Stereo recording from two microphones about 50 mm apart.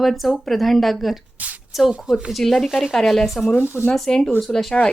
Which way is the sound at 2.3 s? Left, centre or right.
Centre.